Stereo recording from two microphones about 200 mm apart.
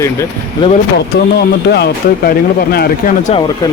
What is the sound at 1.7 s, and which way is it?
Speech, 55° left (ahead or behind).